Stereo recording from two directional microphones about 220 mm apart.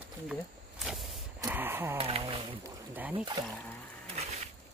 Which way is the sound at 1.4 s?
10° right (ahead or behind).